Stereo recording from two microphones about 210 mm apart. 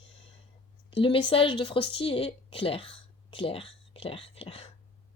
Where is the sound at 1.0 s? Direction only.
25° left (ahead or behind).